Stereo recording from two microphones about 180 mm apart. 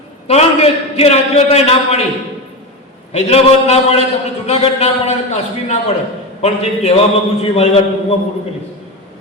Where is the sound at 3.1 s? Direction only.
35° left (ahead or behind).